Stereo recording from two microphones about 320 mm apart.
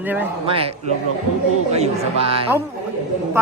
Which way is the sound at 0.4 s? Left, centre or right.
Centre.